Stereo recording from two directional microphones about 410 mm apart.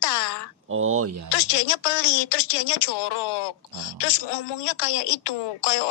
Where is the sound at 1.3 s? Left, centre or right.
Left.